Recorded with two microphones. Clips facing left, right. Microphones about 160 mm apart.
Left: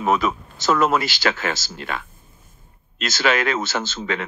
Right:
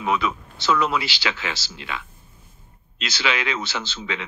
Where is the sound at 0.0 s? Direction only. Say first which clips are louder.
Left 3 dB; 45° left (ahead or behind).